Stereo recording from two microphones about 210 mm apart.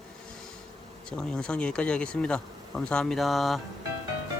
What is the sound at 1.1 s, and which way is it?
Speech, 5° left (ahead or behind).